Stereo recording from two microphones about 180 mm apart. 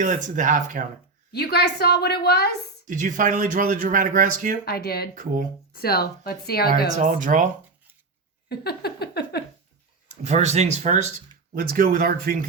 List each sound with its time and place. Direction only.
0.0 s speech: 45° right (ahead or behind)
1.3 s a woman's voice: 65° left (ahead or behind)
2.8 s speech: 45° right (ahead or behind)
4.6 s a woman's voice: 60° left (ahead or behind)
5.1 s speech: 50° right (ahead or behind)
5.7 s a woman's voice: 60° left (ahead or behind)
6.9 s speech: 45° right (ahead or behind)
8.4 s a sound: 60° left (ahead or behind)
10.1 s speech: 40° right (ahead or behind)
11.5 s speech: 50° right (ahead or behind)